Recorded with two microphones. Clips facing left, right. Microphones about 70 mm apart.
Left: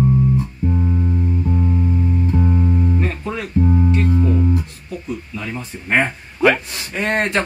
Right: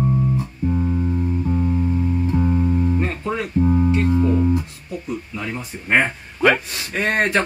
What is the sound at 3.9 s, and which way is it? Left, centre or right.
Music, right.